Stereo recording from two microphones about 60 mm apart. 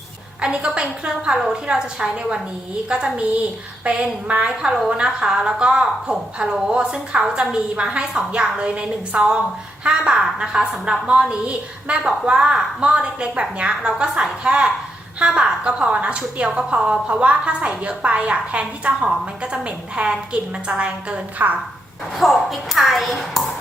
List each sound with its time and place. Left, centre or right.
0.4 s a woman's voice: centre
22.2 s speech: centre